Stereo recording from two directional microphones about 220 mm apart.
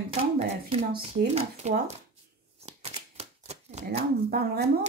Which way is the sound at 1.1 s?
30° right (ahead or behind).